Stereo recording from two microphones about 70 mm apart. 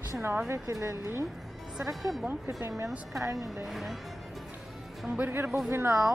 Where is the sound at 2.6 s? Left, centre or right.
Right.